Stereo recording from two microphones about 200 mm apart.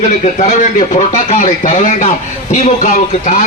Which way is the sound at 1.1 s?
40° left (ahead or behind).